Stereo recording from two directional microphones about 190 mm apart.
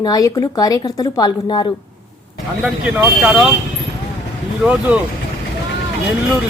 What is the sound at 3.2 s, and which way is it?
Speech, 5° right (ahead or behind).